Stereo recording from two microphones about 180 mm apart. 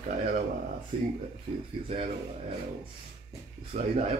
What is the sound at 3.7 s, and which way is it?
Speech, 40° right (ahead or behind).